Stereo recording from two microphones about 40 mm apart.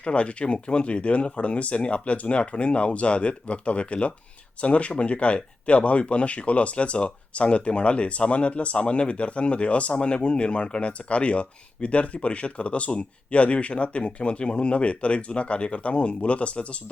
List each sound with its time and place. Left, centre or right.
0.0 s speech: left